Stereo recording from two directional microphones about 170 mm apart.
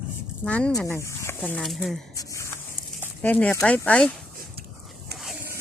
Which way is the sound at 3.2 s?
10° left (ahead or behind).